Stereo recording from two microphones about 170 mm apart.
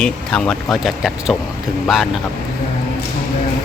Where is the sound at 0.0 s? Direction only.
5° left (ahead or behind).